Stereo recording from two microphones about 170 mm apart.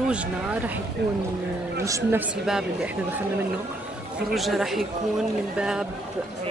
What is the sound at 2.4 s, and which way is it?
Speech, 5° right (ahead or behind).